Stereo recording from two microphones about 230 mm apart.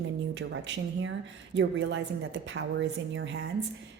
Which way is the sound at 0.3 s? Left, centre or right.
Right.